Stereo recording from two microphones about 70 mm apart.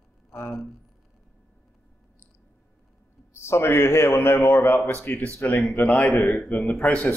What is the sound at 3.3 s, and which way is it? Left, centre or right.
A man's voice, left.